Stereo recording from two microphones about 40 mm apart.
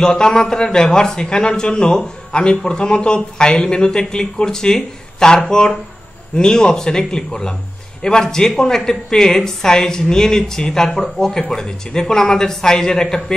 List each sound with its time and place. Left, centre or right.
0.0 s a man's voice: centre